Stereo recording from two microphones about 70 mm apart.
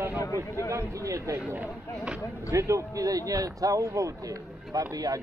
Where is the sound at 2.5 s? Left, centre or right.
Right.